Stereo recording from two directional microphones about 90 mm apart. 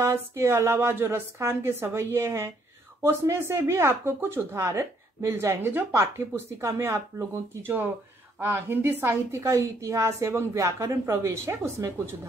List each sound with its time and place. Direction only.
0.0 s a woman's voice: 30° right (ahead or behind)